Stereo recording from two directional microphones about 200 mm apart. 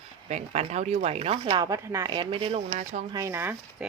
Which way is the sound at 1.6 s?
15° right (ahead or behind).